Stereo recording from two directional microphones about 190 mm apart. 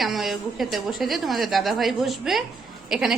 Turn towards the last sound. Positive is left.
turn(degrees=0)  # may be behind; listen again after turning